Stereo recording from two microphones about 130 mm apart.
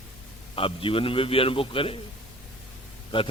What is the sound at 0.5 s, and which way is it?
A man's voice, 45° left (ahead or behind).